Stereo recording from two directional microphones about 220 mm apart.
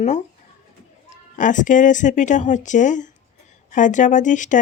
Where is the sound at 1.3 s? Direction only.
35° left (ahead or behind).